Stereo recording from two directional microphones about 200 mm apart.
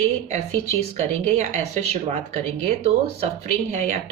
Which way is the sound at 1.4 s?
35° right (ahead or behind).